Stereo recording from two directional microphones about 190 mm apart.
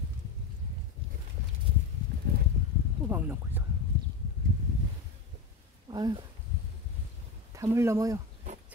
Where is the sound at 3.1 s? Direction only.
10° right (ahead or behind).